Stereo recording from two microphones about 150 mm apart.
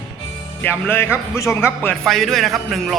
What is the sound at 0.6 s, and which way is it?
Speech, 15° left (ahead or behind).